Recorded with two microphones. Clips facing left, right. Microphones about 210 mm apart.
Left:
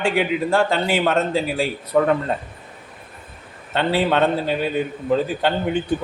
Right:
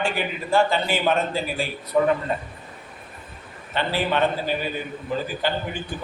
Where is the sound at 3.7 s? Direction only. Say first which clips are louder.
Left 5 dB; 75° left (ahead or behind).